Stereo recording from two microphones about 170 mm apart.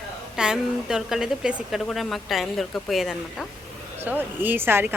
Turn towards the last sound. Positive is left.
turn(degrees=-15)  # may be behind; listen again after turning